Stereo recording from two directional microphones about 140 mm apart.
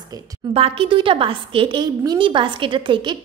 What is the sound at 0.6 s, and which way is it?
A woman's voice, 40° right (ahead or behind).